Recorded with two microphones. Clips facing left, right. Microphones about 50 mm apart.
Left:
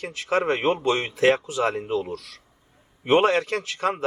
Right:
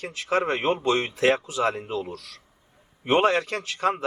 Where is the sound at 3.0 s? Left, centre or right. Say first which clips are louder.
Left 2 dB; centre.